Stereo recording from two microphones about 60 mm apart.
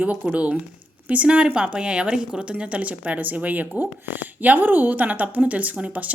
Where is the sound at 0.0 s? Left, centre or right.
Right.